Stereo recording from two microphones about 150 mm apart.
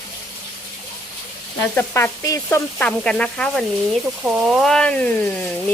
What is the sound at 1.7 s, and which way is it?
Stir, 15° left (ahead or behind).